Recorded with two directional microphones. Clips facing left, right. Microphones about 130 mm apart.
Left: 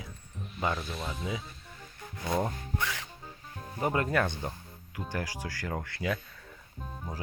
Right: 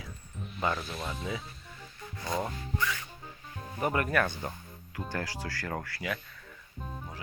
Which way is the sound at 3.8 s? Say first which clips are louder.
Even; 20° left (ahead or behind).